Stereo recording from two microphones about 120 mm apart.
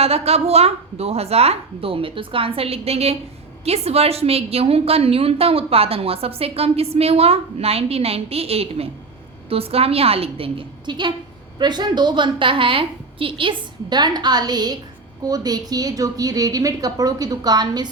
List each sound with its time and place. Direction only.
0.0 s a woman's voice: 60° right (ahead or behind); by 17.8 s 35° right (ahead or behind)